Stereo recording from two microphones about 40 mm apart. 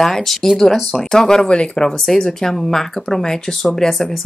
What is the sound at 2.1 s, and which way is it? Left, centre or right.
Speech, centre.